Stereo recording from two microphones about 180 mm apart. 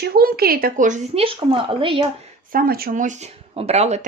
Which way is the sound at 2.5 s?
55° right (ahead or behind).